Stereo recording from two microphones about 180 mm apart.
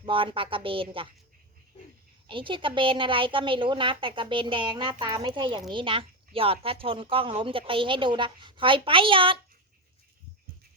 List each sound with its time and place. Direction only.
0.0 s speech: 30° right (ahead or behind)
2.2 s speech: 25° right (ahead or behind)